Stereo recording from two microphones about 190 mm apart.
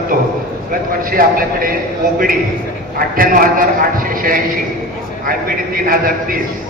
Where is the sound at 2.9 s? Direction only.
50° right (ahead or behind).